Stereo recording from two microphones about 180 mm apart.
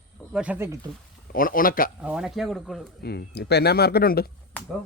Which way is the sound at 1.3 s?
50° left (ahead or behind).